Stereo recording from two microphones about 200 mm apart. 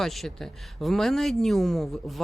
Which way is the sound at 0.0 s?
Centre (ahead or behind).